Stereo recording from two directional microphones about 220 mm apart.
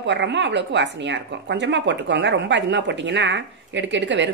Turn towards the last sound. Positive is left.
turn(degrees=-55)  # may be behind; listen again after turning